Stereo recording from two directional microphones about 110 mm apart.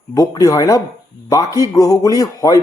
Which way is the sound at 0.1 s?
35° left (ahead or behind).